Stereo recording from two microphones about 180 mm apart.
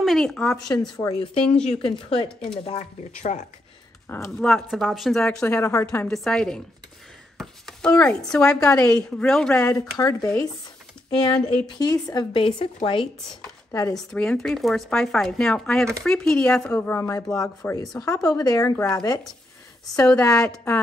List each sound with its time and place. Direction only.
0.0 s speech: centre (ahead or behind)
0.9 s speech: 20° left (ahead or behind)
1.7 s speech: 30° left (ahead or behind)
4.1 s speech: 10° left (ahead or behind)
4.5 s speech: centre (ahead or behind)
5.7 s speech: 15° left (ahead or behind)
6.0 s a woman's voice: 5° left (ahead or behind)
9.6 s speech: 20° left (ahead or behind)
13.7 s speech: 15° left (ahead or behind)
13.9 s speech: 5° left (ahead or behind)
20.1 s speech: 5° left (ahead or behind)